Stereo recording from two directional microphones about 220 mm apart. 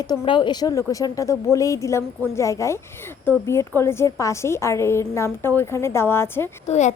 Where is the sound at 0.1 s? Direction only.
20° left (ahead or behind).